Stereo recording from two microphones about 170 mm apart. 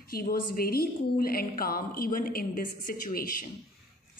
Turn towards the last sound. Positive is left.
turn(degrees=55)  # may be behind; listen again after turning